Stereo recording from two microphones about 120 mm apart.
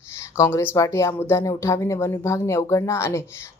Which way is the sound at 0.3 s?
25° left (ahead or behind).